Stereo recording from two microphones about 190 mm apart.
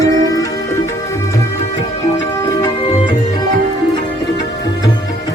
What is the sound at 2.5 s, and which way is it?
Music, 20° left (ahead or behind).